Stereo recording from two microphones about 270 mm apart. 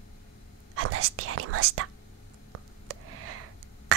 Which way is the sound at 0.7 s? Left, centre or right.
Right.